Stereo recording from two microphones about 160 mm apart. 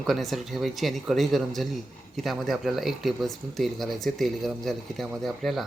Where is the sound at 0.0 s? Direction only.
Centre (ahead or behind).